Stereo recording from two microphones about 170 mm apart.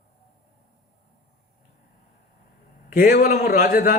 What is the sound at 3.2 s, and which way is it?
Speech, 50° left (ahead or behind).